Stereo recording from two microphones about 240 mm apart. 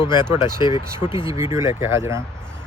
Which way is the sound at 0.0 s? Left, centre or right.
Centre.